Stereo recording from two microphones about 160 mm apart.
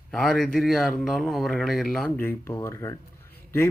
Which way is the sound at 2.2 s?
15° left (ahead or behind).